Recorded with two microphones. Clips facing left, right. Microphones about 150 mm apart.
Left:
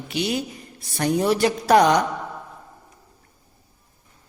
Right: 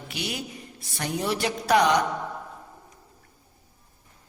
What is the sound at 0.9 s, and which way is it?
Speech, 40° left (ahead or behind).